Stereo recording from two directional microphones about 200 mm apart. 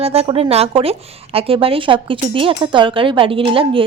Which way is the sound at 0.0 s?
30° right (ahead or behind).